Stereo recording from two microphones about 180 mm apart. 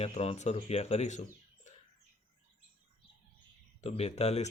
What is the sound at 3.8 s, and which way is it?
Speech, 35° left (ahead or behind).